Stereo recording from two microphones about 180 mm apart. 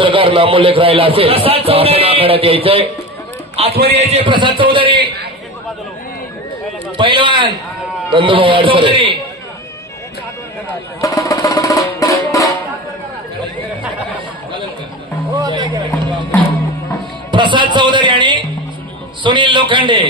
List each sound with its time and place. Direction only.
0.0 s a man's voice: 30° right (ahead or behind)
3.7 s a man's voice: 60° right (ahead or behind)
4.0 s a man's voice: 30° right (ahead or behind)
7.0 s a man's voice: 25° right (ahead or behind)
11.0 s music: 20° left (ahead or behind)
15.3 s music: 20° right (ahead or behind)
17.3 s a sound: 25° right (ahead or behind)
19.2 s a man's voice: 25° right (ahead or behind)